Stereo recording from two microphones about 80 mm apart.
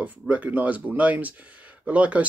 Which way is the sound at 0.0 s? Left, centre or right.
Centre.